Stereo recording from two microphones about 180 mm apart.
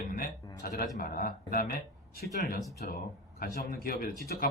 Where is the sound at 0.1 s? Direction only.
55° left (ahead or behind).